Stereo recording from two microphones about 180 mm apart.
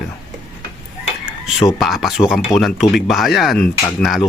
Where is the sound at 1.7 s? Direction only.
Centre (ahead or behind).